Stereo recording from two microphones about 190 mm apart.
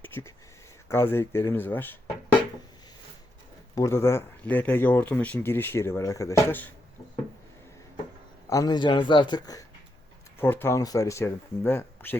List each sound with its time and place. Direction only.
0.0 s a sound: 15° left (ahead or behind)
0.9 s speech: 15° left (ahead or behind)
3.8 s speech: 15° left (ahead or behind)
8.4 s a man's voice: 20° left (ahead or behind)